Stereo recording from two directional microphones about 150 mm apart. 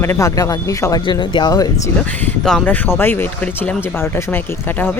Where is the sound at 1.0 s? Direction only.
30° left (ahead or behind).